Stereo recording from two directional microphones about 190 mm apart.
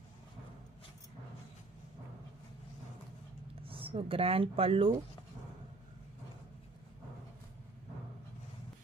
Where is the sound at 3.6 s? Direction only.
30° right (ahead or behind).